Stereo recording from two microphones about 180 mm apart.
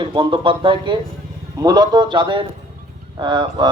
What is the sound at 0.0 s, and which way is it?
Speech, 25° right (ahead or behind).